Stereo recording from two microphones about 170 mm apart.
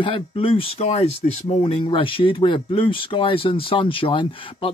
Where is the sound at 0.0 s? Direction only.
30° left (ahead or behind).